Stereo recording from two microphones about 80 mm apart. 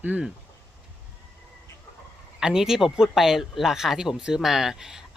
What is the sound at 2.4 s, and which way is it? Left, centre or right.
Speech, centre.